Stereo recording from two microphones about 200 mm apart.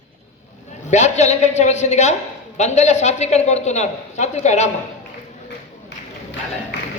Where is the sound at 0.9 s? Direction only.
35° left (ahead or behind).